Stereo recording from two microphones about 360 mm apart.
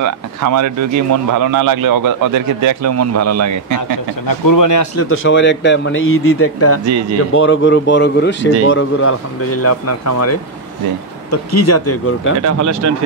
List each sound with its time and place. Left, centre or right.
0.0 s speech: right
4.3 s speech: left
5.1 s speech: left
6.9 s speech: right
7.3 s speech: left
12.4 s speech: right